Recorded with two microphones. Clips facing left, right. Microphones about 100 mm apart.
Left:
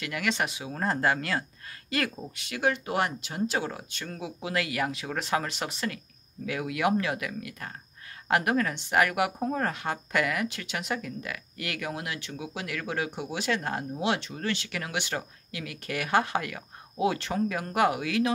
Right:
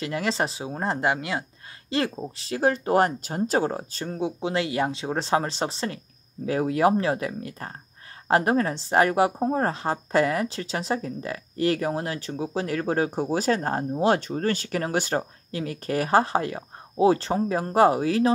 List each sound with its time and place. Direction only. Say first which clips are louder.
0.0 s a woman's voice: right 4 dB; 30° right (ahead or behind)